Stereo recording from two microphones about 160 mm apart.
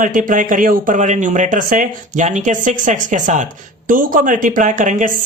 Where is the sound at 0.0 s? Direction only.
55° right (ahead or behind).